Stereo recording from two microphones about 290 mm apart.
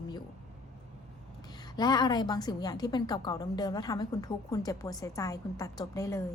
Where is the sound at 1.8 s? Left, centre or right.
Centre.